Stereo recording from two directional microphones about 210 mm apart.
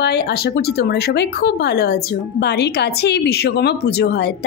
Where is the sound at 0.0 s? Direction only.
50° left (ahead or behind).